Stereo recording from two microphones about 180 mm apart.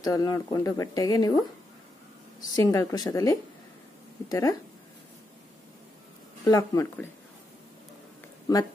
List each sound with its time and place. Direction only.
0.0 s speech: 20° left (ahead or behind)
2.5 s speech: 20° left (ahead or behind)
6.4 s speech: 20° left (ahead or behind)